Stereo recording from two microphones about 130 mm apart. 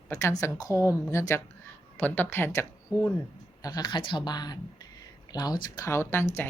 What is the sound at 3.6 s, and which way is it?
Speech, 30° left (ahead or behind).